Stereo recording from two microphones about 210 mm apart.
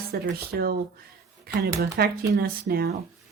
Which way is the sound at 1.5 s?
45° right (ahead or behind).